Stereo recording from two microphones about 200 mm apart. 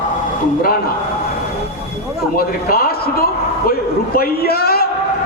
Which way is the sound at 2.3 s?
50° left (ahead or behind).